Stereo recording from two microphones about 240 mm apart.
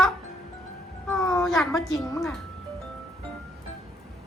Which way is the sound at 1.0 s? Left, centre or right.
Centre.